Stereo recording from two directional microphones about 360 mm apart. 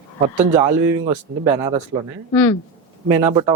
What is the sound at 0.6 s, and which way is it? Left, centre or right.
Speech, centre.